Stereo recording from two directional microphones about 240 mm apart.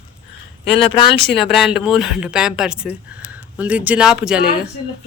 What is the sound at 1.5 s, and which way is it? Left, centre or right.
A woman's voice, centre.